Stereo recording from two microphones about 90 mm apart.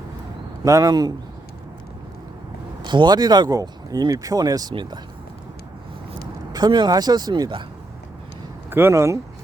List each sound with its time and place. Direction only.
0.6 s speech: 40° right (ahead or behind)
2.8 s speech: 60° right (ahead or behind)
4.7 s speech: 60° right (ahead or behind)
6.5 s speech: 50° right (ahead or behind)
8.7 s speech: 25° right (ahead or behind)